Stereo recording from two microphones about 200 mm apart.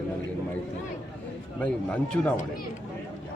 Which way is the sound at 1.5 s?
5° left (ahead or behind).